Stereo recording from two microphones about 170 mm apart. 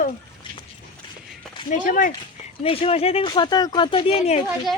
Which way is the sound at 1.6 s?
50° left (ahead or behind).